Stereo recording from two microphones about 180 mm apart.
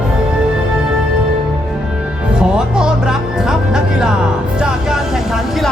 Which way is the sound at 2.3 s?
5° right (ahead or behind).